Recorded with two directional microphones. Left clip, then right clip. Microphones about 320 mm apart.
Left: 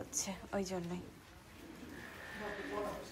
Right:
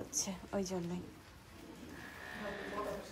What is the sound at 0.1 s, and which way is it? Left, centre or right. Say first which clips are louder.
Speech: right 1 dB; centre.